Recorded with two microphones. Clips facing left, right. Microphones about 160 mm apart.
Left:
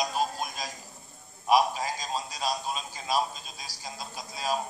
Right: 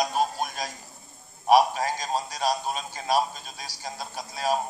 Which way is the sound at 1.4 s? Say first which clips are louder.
Right 4 dB; 60° right (ahead or behind).